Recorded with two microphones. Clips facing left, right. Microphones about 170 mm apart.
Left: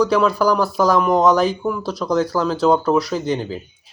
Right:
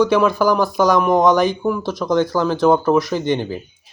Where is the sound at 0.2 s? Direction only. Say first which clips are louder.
Right 1 dB; centre (ahead or behind).